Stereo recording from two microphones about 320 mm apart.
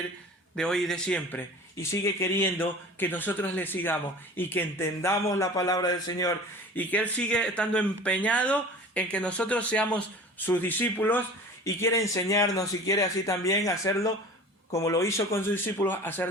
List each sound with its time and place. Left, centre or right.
0.5 s a man's voice: centre